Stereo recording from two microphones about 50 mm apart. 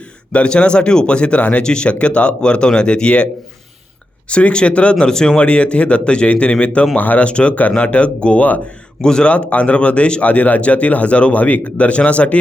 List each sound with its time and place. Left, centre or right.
0.3 s speech: left
4.3 s speech: left
6.9 s speech: left
9.0 s speech: centre
9.3 s speech: left